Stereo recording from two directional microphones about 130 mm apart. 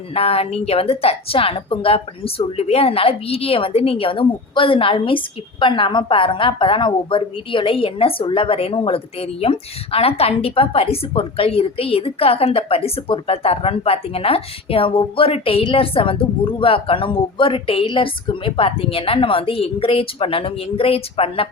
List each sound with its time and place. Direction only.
0.1 s a woman's voice: 50° left (ahead or behind)